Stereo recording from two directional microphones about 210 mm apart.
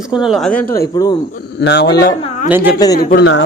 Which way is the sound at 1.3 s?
50° left (ahead or behind).